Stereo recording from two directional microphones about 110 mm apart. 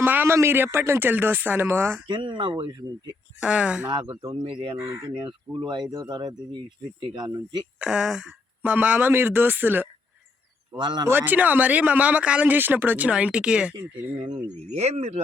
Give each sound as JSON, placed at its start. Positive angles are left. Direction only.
{"t": 0.0, "sound": "speech", "side_deg": -20}
{"t": 2.1, "sound": "speech", "side_deg": -50}
{"t": 3.4, "sound": "speech", "side_deg": -10}
{"t": 3.8, "sound": "speech", "side_deg": -50}
{"t": 4.8, "sound": "speech", "side_deg": -30}
{"t": 5.2, "sound": "speech", "side_deg": -45}
{"t": 7.8, "sound": "speech", "side_deg": -5}
{"t": 10.8, "sound": "speech", "side_deg": -40}
{"t": 11.1, "sound": "speech", "side_deg": -15}
{"t": 14.7, "sound": "speech", "side_deg": -80}